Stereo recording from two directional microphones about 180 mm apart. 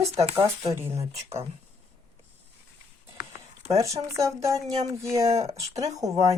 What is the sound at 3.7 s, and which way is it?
Speech, 20° right (ahead or behind).